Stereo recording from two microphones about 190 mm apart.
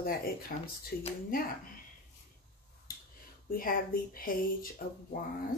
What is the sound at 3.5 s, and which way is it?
Speech, 50° left (ahead or behind).